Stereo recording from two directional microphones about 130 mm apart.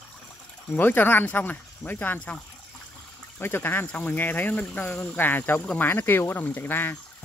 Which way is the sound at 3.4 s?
15° left (ahead or behind).